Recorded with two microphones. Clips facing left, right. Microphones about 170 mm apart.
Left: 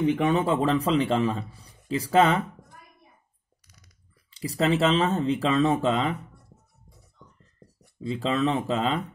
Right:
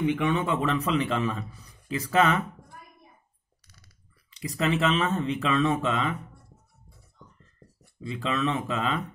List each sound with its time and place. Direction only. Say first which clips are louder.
0.0 s a man's voice: left 3 dB; 40° left (ahead or behind)
3.6 s typing: even; 15° left (ahead or behind)
4.3 s a man's voice: left 3 dB; 30° left (ahead or behind)
7.6 s a sound: left 2 dB; 15° left (ahead or behind)
8.0 s a man's voice: left 3 dB; 30° left (ahead or behind)